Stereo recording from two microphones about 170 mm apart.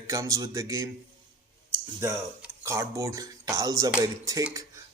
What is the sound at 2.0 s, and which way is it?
Speech, 15° right (ahead or behind).